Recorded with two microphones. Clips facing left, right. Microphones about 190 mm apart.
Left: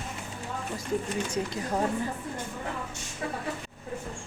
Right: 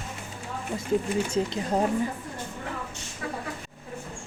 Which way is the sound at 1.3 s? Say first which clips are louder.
Right 4 dB; 25° right (ahead or behind).